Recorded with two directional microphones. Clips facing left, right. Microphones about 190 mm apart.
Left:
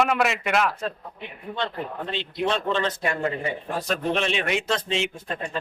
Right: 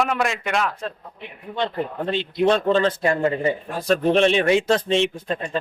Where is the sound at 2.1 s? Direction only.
45° right (ahead or behind).